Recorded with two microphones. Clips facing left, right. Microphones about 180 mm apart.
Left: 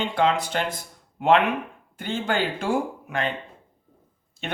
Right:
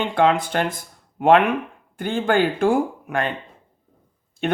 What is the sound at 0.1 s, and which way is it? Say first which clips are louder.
Speech: right 5 dB; 50° right (ahead or behind).